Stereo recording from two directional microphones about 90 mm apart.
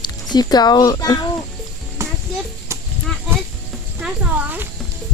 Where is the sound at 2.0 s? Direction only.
30° right (ahead or behind).